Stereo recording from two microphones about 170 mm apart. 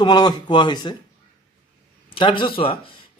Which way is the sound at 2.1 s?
30° left (ahead or behind).